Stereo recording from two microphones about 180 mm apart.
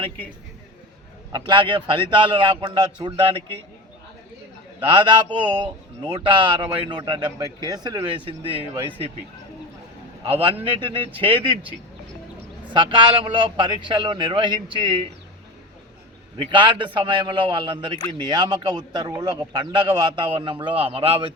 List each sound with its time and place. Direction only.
1.3 s a man's voice: 25° right (ahead or behind)
4.9 s a man's voice: 25° right (ahead or behind)
10.2 s a man's voice: 35° right (ahead or behind)
12.7 s a man's voice: 25° right (ahead or behind)
16.4 s a man's voice: 25° right (ahead or behind)